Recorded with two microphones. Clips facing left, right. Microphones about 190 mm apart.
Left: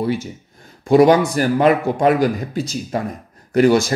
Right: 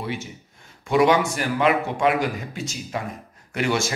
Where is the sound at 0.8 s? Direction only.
40° left (ahead or behind).